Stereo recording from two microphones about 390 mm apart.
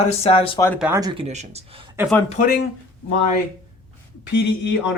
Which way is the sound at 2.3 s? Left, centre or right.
Left.